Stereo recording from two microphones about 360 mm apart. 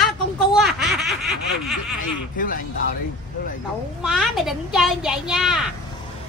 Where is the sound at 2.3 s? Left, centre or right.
Left.